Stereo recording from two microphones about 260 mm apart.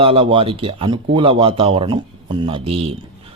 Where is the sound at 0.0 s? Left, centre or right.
Right.